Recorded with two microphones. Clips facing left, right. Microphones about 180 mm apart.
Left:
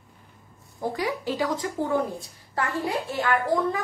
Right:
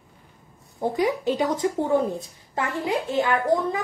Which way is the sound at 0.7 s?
20° right (ahead or behind).